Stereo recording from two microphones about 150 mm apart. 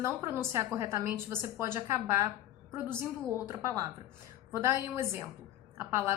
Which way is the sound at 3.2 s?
15° right (ahead or behind).